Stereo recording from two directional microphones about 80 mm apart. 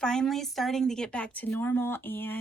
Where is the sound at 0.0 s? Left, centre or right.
Centre.